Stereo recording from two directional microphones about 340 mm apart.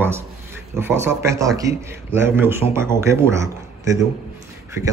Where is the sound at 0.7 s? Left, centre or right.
Centre.